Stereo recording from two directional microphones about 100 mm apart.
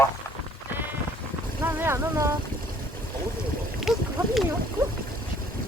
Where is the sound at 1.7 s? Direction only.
20° right (ahead or behind).